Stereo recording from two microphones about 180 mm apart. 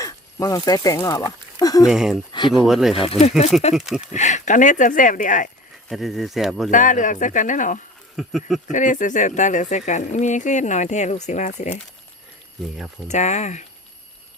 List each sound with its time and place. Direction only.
0.0 s speech: 20° left (ahead or behind)
1.9 s speech: 5° right (ahead or behind)
2.9 s speech: 35° left (ahead or behind)
3.8 s speech: centre (ahead or behind)
4.1 s speech: 40° left (ahead or behind)
5.9 s speech: centre (ahead or behind)
6.7 s speech: 45° left (ahead or behind)
8.1 s speech: centre (ahead or behind)
8.6 s speech: 45° left (ahead or behind)
13.1 s speech: 40° left (ahead or behind)